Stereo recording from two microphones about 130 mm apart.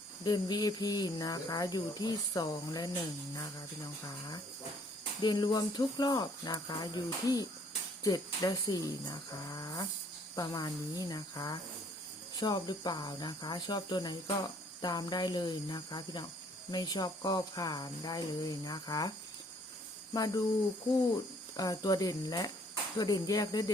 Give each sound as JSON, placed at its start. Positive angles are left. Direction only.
{"t": 0.3, "sound": "speech", "side_deg": 30}
{"t": 5.2, "sound": "speech", "side_deg": 35}
{"t": 20.1, "sound": "speech", "side_deg": 30}
{"t": 21.5, "sound": "speech", "side_deg": 30}